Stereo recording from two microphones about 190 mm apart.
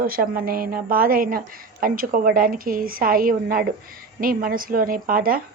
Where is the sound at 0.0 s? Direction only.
50° right (ahead or behind).